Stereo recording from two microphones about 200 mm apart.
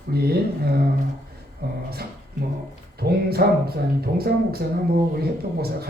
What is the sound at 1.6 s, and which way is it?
Speech, 50° right (ahead or behind).